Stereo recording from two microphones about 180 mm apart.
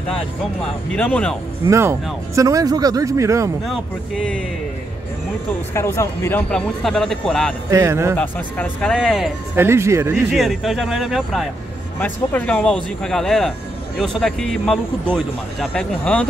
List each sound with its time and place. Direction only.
0.9 s speech: 10° left (ahead or behind)
1.7 s speech: 15° right (ahead or behind)
3.6 s speech: centre (ahead or behind)
5.8 s speech: 15° left (ahead or behind)
7.7 s speech: 15° right (ahead or behind)
8.2 s speech: 10° left (ahead or behind)
9.6 s speech: 15° right (ahead or behind)
10.3 s speech: centre (ahead or behind)
12.0 s speech: 10° left (ahead or behind)